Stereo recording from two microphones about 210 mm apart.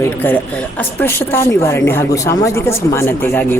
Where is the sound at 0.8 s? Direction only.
10° left (ahead or behind).